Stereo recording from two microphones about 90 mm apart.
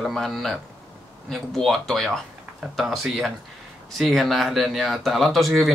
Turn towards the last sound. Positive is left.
turn(degrees=0)  # may be behind; listen again after turning